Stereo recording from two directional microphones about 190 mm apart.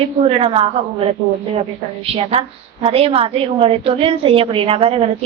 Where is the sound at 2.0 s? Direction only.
30° right (ahead or behind).